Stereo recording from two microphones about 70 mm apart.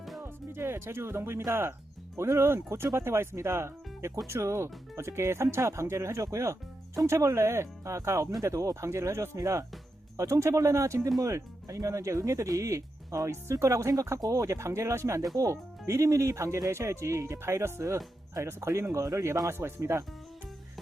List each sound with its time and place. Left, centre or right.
0.0 s music: centre
0.5 s speech: right